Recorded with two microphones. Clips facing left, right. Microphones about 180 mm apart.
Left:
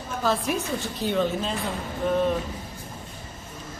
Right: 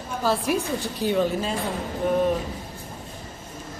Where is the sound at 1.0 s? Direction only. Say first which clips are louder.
Right 2 dB; 10° right (ahead or behind).